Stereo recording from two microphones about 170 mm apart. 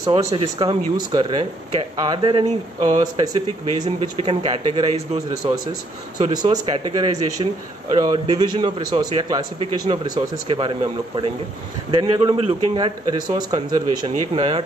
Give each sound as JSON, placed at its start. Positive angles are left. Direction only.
{"t": 0.0, "sound": "a man's voice", "side_deg": -20}
{"t": 5.4, "sound": "a man's voice", "side_deg": -25}